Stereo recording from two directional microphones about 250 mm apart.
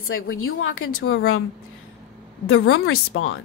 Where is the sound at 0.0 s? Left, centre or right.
Left.